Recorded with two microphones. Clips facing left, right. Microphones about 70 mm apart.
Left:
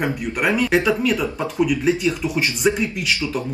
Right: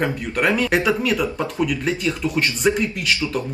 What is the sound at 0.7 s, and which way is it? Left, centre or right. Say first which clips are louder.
Speech: left 1 dB; centre.